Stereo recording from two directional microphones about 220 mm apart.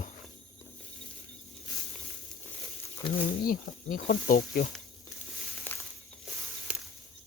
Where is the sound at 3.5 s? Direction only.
40° left (ahead or behind).